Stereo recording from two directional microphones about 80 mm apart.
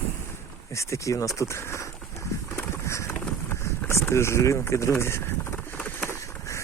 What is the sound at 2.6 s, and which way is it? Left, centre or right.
Skateboard, left.